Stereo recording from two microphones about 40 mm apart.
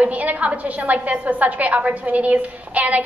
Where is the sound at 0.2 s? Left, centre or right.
Right.